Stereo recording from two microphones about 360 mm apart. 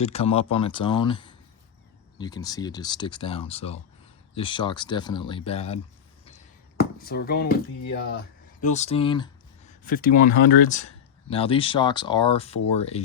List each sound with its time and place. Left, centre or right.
0.0 s speech: centre